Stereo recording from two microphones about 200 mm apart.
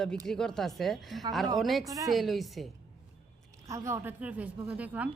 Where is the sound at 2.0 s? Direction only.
Centre (ahead or behind).